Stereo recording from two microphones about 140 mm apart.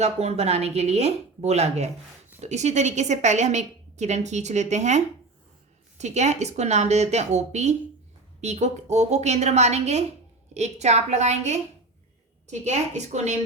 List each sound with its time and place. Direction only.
0.0 s a woman's voice: 50° right (ahead or behind)